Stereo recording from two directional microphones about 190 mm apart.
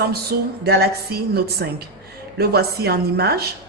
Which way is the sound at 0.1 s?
55° right (ahead or behind).